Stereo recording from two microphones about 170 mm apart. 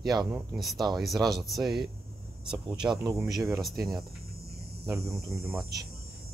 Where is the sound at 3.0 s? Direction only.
20° right (ahead or behind).